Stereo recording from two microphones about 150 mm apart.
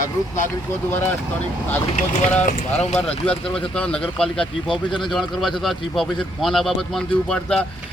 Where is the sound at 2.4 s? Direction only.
50° left (ahead or behind).